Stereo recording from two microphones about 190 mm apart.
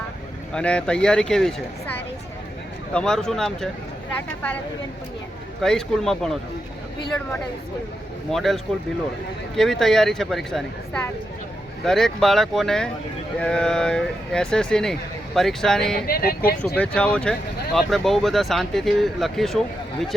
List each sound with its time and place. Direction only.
0.5 s speech: 5° left (ahead or behind)
2.9 s speech: 5° left (ahead or behind)
5.6 s speech: 5° left (ahead or behind)
8.3 s speech: centre (ahead or behind)
16.0 s speech: 55° left (ahead or behind)
16.7 s speech: 5° left (ahead or behind)